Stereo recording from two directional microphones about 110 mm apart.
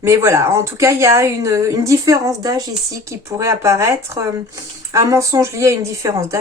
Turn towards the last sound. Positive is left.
turn(degrees=-25)  # may be behind; listen again after turning